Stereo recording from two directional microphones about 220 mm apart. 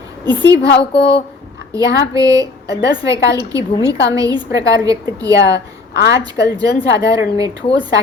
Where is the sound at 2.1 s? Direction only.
15° right (ahead or behind).